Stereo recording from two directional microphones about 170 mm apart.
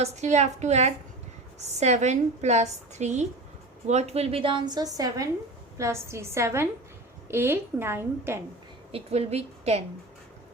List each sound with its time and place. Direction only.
0.0 s a woman's voice: 40° right (ahead or behind); by 8.4 s 15° right (ahead or behind)
8.9 s a woman's voice: 35° right (ahead or behind)